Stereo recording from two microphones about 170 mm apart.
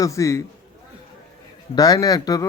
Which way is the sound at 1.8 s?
20° left (ahead or behind).